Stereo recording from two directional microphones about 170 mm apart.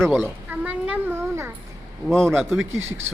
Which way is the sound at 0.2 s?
10° right (ahead or behind).